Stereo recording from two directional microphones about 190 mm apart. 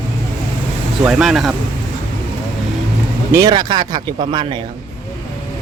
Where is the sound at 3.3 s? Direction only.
20° right (ahead or behind).